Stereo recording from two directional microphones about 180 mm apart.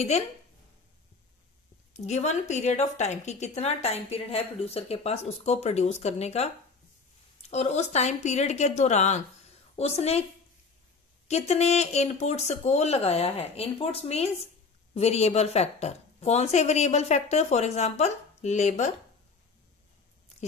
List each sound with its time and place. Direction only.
2.0 s a woman's voice: 40° left (ahead or behind)
11.2 s a woman's voice: 35° left (ahead or behind)